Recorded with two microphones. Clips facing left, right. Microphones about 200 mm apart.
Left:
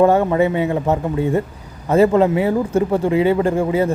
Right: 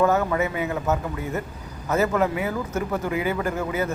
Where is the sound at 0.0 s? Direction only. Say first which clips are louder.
Left 7 dB; 30° left (ahead or behind).